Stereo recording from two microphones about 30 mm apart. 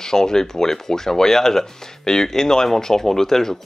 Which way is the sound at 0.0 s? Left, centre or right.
Centre.